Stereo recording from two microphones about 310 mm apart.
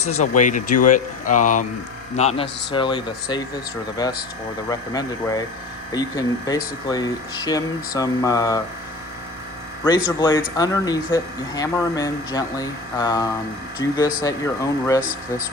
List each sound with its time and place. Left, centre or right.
0.2 s speech: left
10.2 s speech: centre